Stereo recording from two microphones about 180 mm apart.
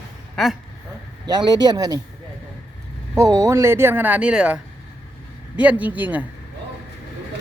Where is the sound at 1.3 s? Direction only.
20° right (ahead or behind).